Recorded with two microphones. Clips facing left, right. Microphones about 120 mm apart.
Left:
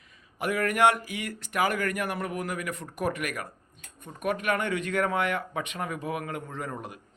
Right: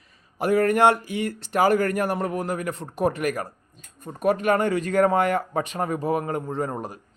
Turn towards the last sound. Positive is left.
turn(degrees=-35)  # may be behind; listen again after turning